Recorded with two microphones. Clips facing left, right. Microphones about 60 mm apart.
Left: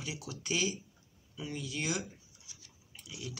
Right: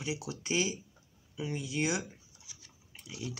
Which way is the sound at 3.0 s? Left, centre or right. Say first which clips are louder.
Right 3 dB; right.